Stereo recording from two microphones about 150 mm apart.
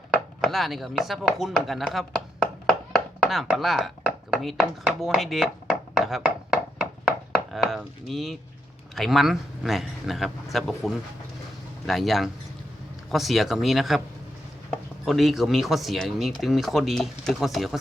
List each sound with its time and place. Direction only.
0.4 s speech: centre (ahead or behind)
6.1 s a sound: 5° right (ahead or behind)
7.3 s chop: centre (ahead or behind)
9.0 s speech: centre (ahead or behind)